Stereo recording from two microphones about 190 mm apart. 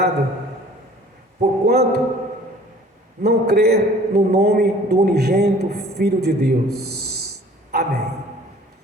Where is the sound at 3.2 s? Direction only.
55° right (ahead or behind).